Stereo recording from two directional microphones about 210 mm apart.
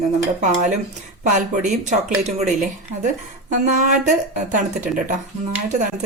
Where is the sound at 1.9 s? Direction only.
35° right (ahead or behind).